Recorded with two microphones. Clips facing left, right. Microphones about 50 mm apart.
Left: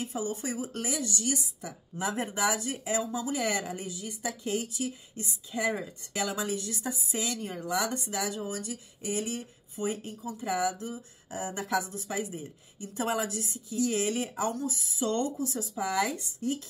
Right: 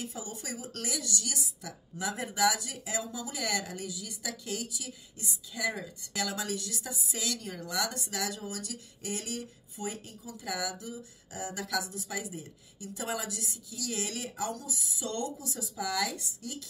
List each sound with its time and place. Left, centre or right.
0.0 s a woman's voice: left